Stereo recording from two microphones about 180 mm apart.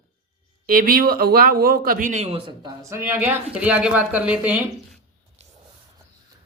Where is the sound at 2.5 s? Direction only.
20° right (ahead or behind).